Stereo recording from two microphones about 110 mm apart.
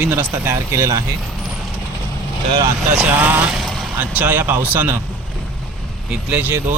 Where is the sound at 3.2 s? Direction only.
15° right (ahead or behind).